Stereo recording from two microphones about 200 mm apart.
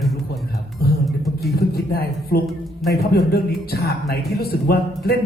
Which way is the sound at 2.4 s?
Centre (ahead or behind).